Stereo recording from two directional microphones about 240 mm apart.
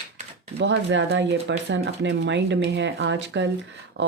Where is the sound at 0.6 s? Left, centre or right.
Right.